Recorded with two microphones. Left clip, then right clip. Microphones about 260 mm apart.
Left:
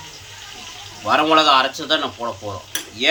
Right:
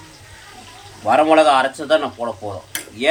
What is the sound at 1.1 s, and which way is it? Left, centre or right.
Speech, centre.